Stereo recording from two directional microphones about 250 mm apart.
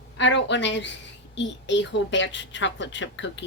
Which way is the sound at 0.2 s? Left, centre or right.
Left.